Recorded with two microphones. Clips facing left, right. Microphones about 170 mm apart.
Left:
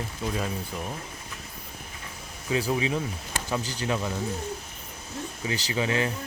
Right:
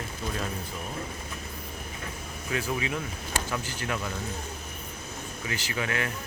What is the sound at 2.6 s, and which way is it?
Speech, 30° left (ahead or behind).